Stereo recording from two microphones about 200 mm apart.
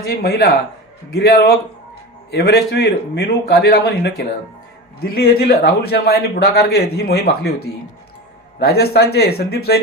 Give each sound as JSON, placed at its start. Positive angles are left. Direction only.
{"t": 0.0, "sound": "a man's voice", "side_deg": 50}